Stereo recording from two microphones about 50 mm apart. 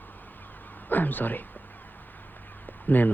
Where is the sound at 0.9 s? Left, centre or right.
Left.